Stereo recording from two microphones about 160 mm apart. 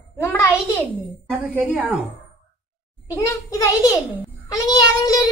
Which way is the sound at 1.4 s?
5° right (ahead or behind).